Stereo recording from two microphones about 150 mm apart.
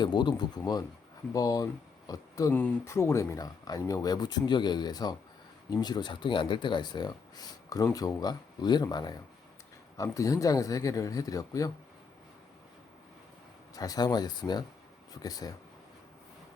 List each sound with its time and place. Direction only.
0.0 s speech: 30° left (ahead or behind)
2.5 s speech: 10° left (ahead or behind)
13.7 s speech: 25° left (ahead or behind)